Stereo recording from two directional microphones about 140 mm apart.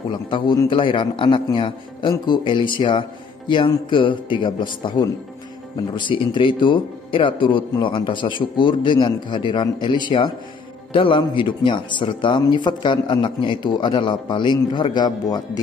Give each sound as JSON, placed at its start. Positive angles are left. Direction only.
{"t": 0.1, "sound": "a man's voice", "side_deg": 30}